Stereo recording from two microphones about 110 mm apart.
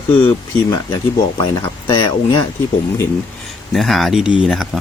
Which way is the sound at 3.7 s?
Centre (ahead or behind).